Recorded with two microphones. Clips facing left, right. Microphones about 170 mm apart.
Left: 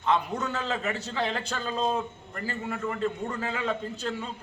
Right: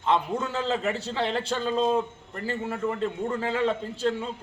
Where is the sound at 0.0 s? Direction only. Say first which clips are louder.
Right 2 dB; 25° right (ahead or behind).